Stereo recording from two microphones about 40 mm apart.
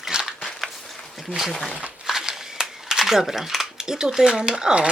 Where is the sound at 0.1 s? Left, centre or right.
Right.